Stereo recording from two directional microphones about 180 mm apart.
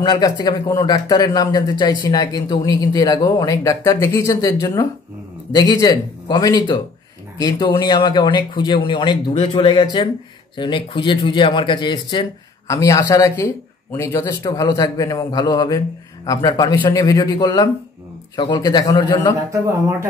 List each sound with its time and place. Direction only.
0.0 s speech: 20° left (ahead or behind)